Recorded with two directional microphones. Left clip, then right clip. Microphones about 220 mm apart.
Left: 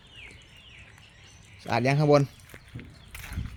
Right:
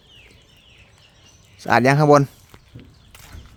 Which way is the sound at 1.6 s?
45° right (ahead or behind).